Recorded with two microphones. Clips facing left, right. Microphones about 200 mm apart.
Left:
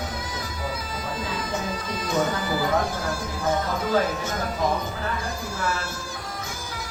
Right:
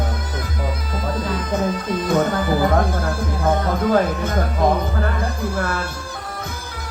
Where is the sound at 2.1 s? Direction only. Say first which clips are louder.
Right 5 dB; 55° right (ahead or behind).